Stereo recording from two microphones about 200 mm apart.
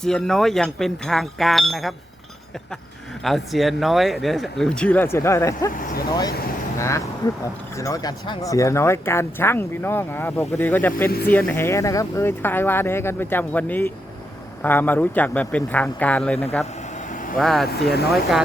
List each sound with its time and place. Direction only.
0.0 s speech: centre (ahead or behind)
3.2 s speech: centre (ahead or behind)
5.7 s speech: 45° left (ahead or behind)
6.7 s speech: 15° left (ahead or behind)
17.1 s vehicle: 40° left (ahead or behind)
17.3 s speech: centre (ahead or behind)
17.7 s speech: 55° left (ahead or behind)
18.1 s speech: centre (ahead or behind)